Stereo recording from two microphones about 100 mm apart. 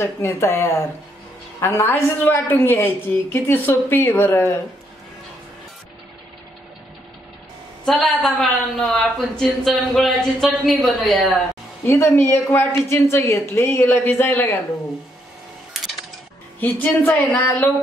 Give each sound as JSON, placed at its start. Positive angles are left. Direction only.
{"t": 0.0, "sound": "speech", "side_deg": 25}
{"t": 7.8, "sound": "a woman's voice", "side_deg": 5}
{"t": 11.8, "sound": "speech", "side_deg": 25}
{"t": 16.5, "sound": "speech", "side_deg": 15}